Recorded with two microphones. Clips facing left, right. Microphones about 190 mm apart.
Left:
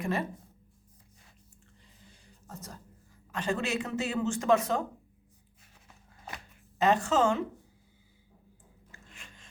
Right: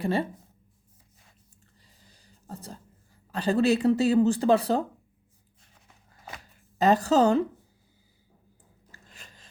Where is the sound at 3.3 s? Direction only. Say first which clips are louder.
Right 9 dB; 35° right (ahead or behind).